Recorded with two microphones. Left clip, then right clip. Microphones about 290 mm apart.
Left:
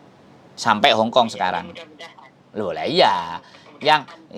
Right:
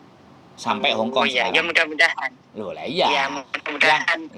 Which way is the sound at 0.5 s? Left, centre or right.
Left.